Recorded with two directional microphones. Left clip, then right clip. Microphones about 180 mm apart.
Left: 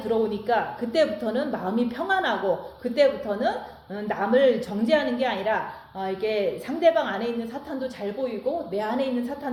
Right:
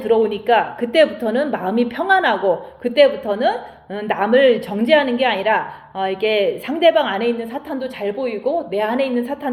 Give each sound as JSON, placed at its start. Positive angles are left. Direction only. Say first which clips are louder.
{"t": 0.1, "sound": "a woman's voice", "louder": "right 9 dB", "side_deg": -30}